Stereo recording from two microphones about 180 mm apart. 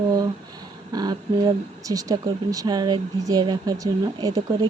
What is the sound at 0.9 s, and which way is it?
Speech, 20° right (ahead or behind).